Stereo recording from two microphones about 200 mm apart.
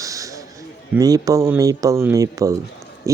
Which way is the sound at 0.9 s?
15° right (ahead or behind).